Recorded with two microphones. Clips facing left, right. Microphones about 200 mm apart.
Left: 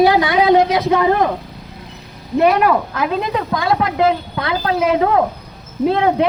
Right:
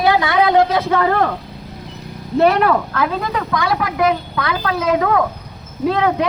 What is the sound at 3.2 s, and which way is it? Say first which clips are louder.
Speech: left 1 dB; 25° left (ahead or behind).